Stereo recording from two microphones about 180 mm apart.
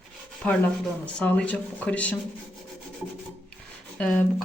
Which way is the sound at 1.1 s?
5° left (ahead or behind).